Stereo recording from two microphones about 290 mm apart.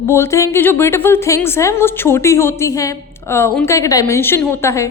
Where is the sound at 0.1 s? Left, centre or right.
Centre.